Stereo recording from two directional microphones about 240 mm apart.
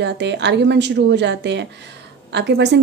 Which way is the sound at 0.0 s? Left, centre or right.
Right.